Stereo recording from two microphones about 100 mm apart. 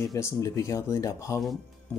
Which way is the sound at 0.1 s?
35° left (ahead or behind).